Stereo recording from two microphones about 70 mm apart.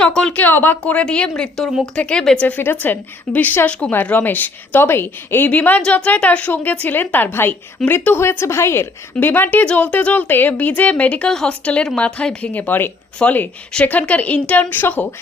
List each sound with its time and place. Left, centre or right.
0.0 s speech: centre
0.3 s a woman's voice: left
0.9 s speech: centre
1.4 s a woman's voice: centre
2.0 s speech: centre
2.8 s a woman's voice: left
3.7 s a woman's voice: centre
12.5 s a woman's voice: left